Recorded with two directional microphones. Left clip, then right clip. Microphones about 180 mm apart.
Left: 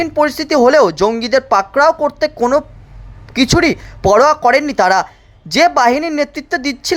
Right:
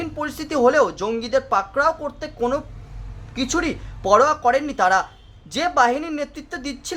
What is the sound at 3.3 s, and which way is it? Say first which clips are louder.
Speech: left 11 dB; 40° left (ahead or behind).